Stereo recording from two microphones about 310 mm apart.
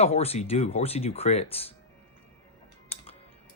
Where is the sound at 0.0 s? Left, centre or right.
Centre.